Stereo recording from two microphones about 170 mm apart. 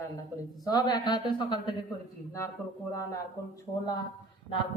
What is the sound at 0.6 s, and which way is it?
Speech, 25° left (ahead or behind).